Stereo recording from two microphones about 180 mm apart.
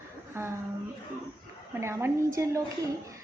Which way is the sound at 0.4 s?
15° right (ahead or behind).